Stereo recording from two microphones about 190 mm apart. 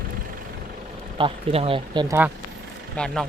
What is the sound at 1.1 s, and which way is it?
Speech, 30° right (ahead or behind).